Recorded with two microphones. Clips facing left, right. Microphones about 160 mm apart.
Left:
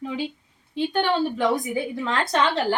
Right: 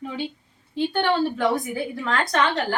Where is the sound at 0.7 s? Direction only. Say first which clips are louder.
Right 1 dB; 15° left (ahead or behind).